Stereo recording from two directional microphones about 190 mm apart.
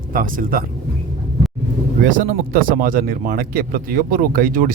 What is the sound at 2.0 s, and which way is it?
Speech, 45° right (ahead or behind).